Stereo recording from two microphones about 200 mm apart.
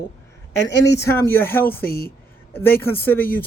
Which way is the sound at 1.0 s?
10° left (ahead or behind).